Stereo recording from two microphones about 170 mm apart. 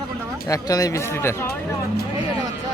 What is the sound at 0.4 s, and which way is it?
Speech, 20° left (ahead or behind).